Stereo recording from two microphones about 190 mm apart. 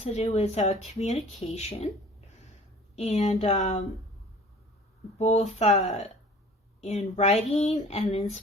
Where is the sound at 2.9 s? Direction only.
35° left (ahead or behind).